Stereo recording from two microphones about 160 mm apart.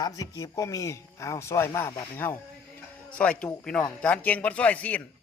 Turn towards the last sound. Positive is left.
turn(degrees=10)  # may be behind; listen again after turning